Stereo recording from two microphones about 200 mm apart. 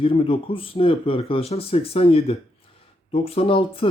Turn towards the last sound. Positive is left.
turn(degrees=25)  # may be behind; listen again after turning